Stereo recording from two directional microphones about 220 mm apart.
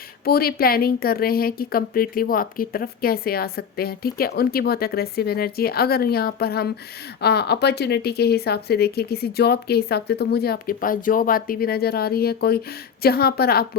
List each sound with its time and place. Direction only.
0.3 s a woman's voice: 45° left (ahead or behind)